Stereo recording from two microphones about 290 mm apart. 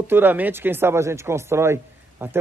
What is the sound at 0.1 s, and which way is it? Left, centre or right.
Speech, centre.